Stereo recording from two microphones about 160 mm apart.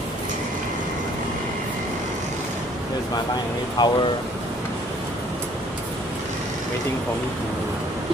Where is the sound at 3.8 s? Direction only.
25° left (ahead or behind).